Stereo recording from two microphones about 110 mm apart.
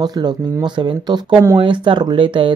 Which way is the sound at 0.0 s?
40° right (ahead or behind).